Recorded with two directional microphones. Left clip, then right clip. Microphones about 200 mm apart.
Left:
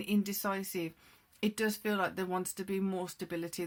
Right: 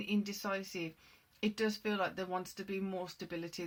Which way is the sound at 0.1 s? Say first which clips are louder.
Left 3 dB; 45° left (ahead or behind).